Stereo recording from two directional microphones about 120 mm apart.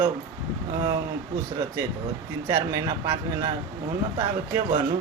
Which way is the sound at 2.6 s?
30° right (ahead or behind).